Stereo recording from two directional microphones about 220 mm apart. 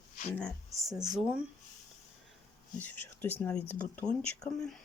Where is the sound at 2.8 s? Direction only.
10° left (ahead or behind).